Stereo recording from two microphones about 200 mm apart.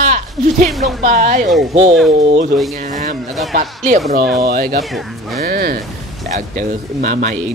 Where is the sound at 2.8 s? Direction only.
40° right (ahead or behind).